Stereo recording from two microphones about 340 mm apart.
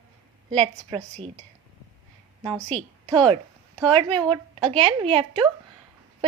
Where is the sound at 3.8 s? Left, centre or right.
Centre.